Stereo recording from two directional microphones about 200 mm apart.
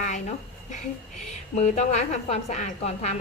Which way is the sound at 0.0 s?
35° left (ahead or behind).